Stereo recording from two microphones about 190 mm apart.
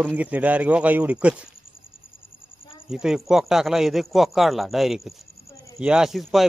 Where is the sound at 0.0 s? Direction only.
10° right (ahead or behind).